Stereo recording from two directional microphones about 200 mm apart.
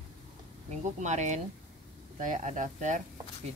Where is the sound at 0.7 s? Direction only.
35° right (ahead or behind).